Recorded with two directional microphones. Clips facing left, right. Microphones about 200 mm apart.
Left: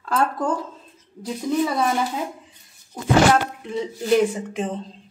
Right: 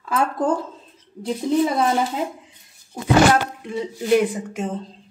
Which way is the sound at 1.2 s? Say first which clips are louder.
Right 3 dB; 25° right (ahead or behind).